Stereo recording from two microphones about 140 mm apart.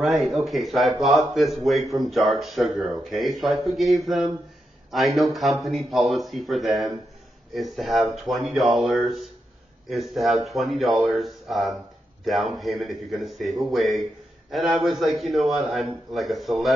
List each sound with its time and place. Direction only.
0.0 s speech: centre (ahead or behind)